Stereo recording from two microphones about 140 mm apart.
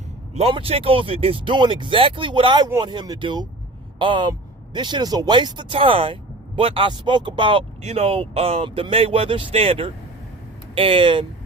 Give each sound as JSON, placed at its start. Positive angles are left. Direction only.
{"t": 0.3, "sound": "speech", "side_deg": -45}